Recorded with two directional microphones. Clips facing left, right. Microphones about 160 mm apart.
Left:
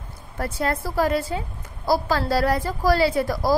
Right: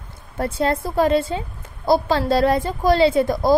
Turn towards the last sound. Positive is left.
turn(degrees=-20)  # may be behind; listen again after turning